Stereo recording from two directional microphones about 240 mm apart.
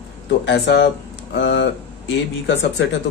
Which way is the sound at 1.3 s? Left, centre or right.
Left.